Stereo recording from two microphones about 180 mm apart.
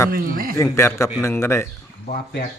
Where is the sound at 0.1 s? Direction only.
55° right (ahead or behind).